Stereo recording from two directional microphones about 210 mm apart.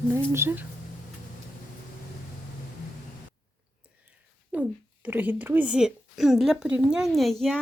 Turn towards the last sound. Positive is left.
turn(degrees=0)  # may be behind; listen again after turning